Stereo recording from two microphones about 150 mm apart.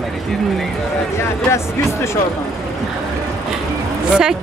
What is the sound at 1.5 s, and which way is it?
Speech, 20° left (ahead or behind).